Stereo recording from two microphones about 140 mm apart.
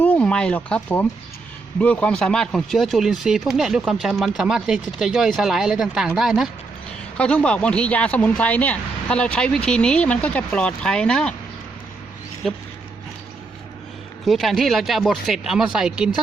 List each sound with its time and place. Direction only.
0.0 s speech: 10° left (ahead or behind)
7.2 s speech: 10° left (ahead or behind)
12.4 s speech: centre (ahead or behind)
14.3 s speech: centre (ahead or behind)